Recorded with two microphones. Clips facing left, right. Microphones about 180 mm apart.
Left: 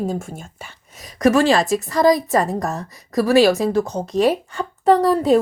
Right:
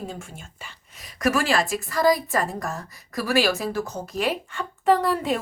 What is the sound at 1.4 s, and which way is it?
A woman's voice, 30° left (ahead or behind).